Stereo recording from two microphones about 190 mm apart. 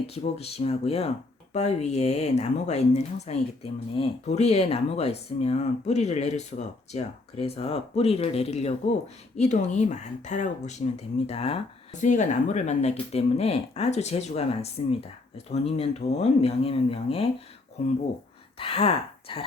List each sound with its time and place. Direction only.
0.1 s speech: 30° left (ahead or behind)